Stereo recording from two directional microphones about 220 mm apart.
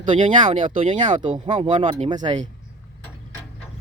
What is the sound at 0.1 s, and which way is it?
Speech, 25° right (ahead or behind).